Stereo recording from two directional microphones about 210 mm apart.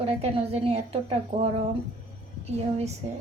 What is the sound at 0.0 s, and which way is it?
A woman's voice, 25° right (ahead or behind).